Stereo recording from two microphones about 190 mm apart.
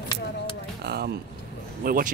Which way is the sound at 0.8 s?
60° right (ahead or behind).